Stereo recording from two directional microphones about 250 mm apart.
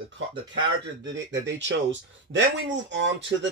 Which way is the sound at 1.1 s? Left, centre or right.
Right.